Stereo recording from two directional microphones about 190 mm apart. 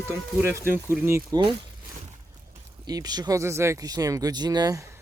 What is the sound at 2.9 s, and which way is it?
Speech, 20° right (ahead or behind).